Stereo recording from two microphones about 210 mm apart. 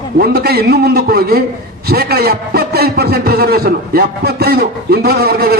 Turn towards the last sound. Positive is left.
turn(degrees=-45)  # may be behind; listen again after turning